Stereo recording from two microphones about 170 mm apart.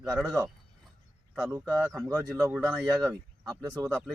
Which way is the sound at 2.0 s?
20° right (ahead or behind).